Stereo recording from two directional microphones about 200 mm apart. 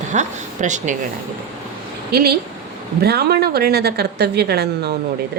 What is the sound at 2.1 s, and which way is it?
A woman's voice, 50° right (ahead or behind).